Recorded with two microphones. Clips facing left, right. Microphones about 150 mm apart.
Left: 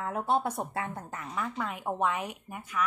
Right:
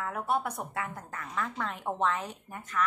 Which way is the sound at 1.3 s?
5° left (ahead or behind).